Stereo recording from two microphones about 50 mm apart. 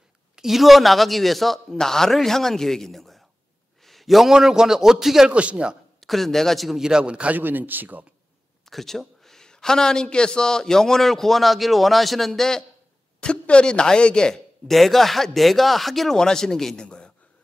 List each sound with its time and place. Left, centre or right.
0.4 s a man's voice: centre
5.3 s a man's voice: right
5.9 s a man's voice: centre
6.8 s a man's voice: centre
7.3 s speech: right
8.6 s a man's voice: centre
13.2 s speech: left
14.7 s a man's voice: centre
16.8 s a sound: left